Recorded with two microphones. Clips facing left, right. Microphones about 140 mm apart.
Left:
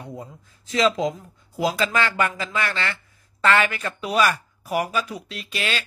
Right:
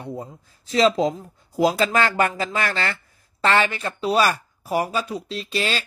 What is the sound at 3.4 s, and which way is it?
Speech, 30° right (ahead or behind).